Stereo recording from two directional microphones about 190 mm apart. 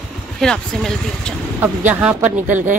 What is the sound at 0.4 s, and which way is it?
Speech, 5° left (ahead or behind).